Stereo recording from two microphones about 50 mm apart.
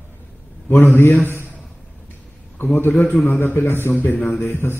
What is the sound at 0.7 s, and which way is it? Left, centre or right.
Speech, left.